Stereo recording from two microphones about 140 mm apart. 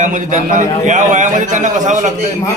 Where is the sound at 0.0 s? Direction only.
65° right (ahead or behind).